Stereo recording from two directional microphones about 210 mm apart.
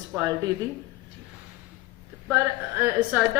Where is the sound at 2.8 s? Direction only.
5° right (ahead or behind).